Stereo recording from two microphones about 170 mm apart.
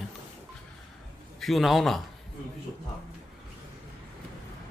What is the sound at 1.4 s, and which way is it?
Speech, centre (ahead or behind).